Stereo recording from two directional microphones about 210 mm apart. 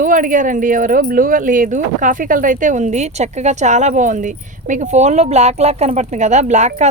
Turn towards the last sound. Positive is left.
turn(degrees=-35)  # may be behind; listen again after turning